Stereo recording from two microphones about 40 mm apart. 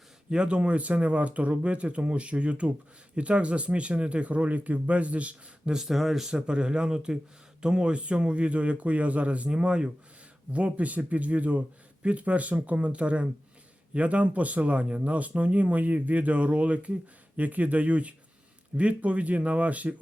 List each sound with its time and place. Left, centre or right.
0.3 s speech: right
5.7 s speech: centre
6.3 s speech: right